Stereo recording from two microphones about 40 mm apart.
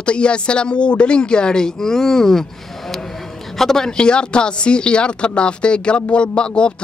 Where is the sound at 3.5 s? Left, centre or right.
Centre.